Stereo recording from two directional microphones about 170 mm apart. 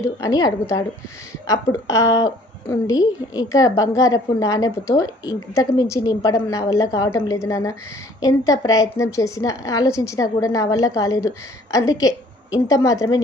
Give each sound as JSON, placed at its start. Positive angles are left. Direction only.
{"t": 0.2, "sound": "a woman's voice", "side_deg": 20}